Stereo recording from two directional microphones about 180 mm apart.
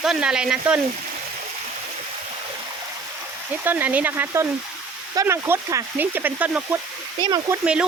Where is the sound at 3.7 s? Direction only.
10° right (ahead or behind).